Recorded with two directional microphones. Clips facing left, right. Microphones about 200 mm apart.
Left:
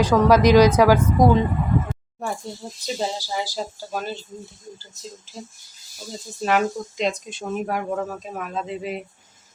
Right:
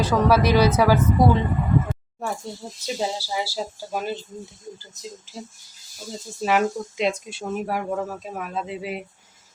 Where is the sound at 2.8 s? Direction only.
5° right (ahead or behind).